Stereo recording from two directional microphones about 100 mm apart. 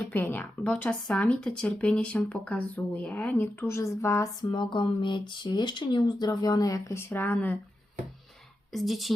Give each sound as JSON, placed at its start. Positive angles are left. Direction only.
{"t": 0.0, "sound": "a woman's voice", "side_deg": 20}
{"t": 0.6, "sound": "speech", "side_deg": 10}
{"t": 3.3, "sound": "a woman's voice", "side_deg": 25}
{"t": 4.4, "sound": "speech", "side_deg": 50}
{"t": 7.1, "sound": "speech", "side_deg": 20}
{"t": 8.7, "sound": "a woman's voice", "side_deg": 0}